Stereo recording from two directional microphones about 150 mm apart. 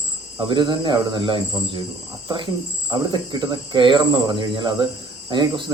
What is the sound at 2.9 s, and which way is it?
Speech, 30° right (ahead or behind).